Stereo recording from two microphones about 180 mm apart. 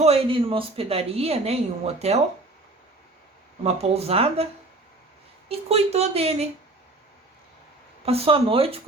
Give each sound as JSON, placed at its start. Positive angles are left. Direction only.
{"t": 0.0, "sound": "speech", "side_deg": -30}
{"t": 3.6, "sound": "speech", "side_deg": -35}
{"t": 5.5, "sound": "speech", "side_deg": -35}
{"t": 8.0, "sound": "speech", "side_deg": -35}